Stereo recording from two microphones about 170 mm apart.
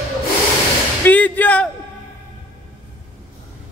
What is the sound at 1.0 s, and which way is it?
Music, 10° left (ahead or behind).